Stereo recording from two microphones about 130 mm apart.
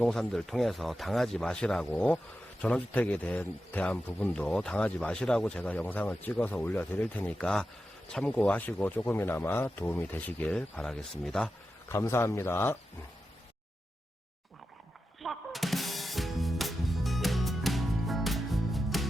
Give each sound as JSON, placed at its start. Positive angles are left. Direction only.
{"t": 0.0, "sound": "speech", "side_deg": 0}
{"t": 11.9, "sound": "a man's voice", "side_deg": 20}
{"t": 15.2, "sound": "music", "side_deg": 0}